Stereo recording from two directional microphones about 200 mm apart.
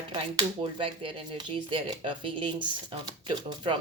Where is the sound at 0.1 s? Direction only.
25° right (ahead or behind).